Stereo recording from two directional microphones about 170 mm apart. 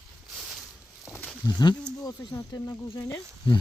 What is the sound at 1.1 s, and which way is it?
Wild animals, 10° left (ahead or behind).